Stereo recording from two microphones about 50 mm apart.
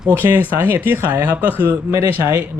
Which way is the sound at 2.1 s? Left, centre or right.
Right.